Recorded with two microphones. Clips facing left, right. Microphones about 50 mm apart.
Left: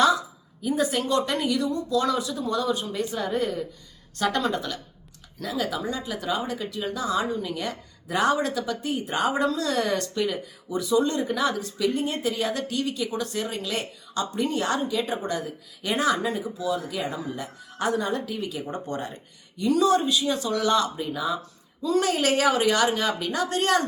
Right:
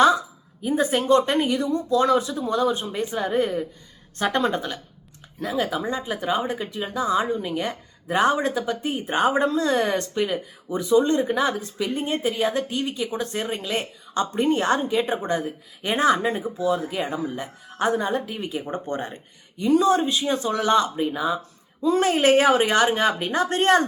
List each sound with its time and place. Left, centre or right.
0.0 s speech: right